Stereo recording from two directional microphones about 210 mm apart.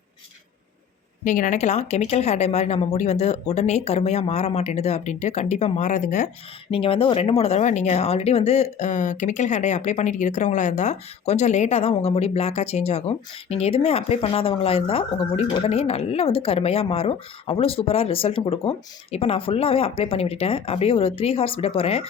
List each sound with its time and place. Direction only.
1.2 s a woman's voice: 35° left (ahead or behind)
6.7 s speech: 25° left (ahead or behind)